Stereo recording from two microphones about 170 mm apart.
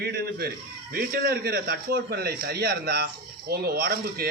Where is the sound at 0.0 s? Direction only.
70° right (ahead or behind).